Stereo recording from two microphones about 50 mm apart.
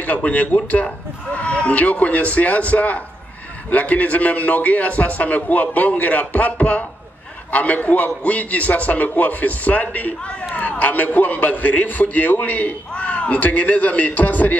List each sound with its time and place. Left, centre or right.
0.0 s a man's voice: left